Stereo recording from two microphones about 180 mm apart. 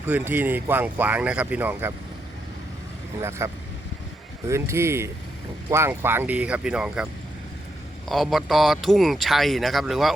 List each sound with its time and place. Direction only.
0.1 s speech: 10° right (ahead or behind)
3.2 s speech: 15° right (ahead or behind)